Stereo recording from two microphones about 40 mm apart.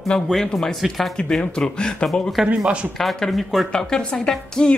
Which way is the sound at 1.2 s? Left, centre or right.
Left.